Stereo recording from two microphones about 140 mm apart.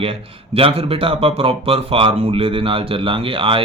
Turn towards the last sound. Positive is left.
turn(degrees=-40)  # may be behind; listen again after turning